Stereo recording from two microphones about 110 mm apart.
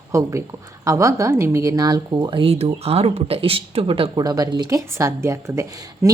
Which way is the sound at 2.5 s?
70° right (ahead or behind).